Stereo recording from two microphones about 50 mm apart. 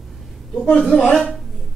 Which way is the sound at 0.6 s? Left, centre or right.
Left.